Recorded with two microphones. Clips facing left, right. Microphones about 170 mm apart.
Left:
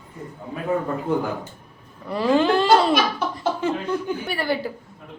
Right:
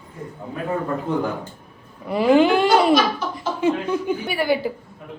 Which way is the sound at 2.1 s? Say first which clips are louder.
Right 3 dB; 15° right (ahead or behind).